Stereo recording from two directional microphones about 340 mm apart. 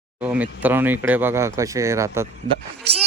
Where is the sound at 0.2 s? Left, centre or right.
Centre.